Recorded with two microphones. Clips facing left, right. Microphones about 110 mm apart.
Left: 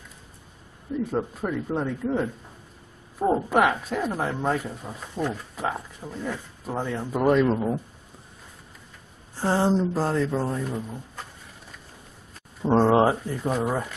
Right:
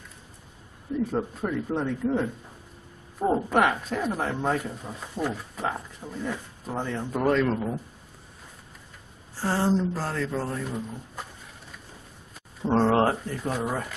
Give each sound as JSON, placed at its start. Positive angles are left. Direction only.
{"t": 1.1, "sound": "speech", "side_deg": 5}
{"t": 9.4, "sound": "speech", "side_deg": 20}
{"t": 12.6, "sound": "speech", "side_deg": 10}